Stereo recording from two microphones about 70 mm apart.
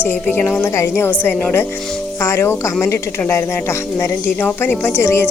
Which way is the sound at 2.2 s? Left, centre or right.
Left.